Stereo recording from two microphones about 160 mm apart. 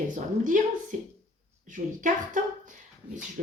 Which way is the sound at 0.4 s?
55° right (ahead or behind).